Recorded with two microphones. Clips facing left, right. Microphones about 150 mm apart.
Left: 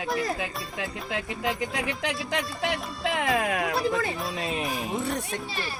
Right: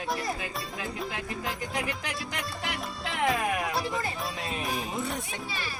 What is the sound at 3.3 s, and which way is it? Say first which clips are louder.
Speech: left 3 dB; 90° left.